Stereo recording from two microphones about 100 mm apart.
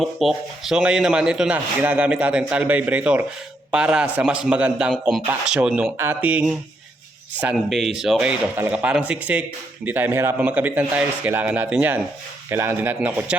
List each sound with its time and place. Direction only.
0.0 s speech: centre (ahead or behind); by 6.4 s 15° right (ahead or behind)
7.5 s speech: centre (ahead or behind)